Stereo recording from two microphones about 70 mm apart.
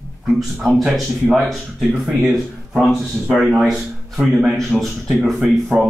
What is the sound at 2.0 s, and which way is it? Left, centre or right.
Speech, centre.